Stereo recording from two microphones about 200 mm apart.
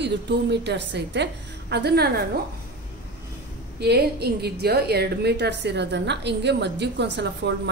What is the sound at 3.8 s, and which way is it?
A woman's voice, 55° right (ahead or behind).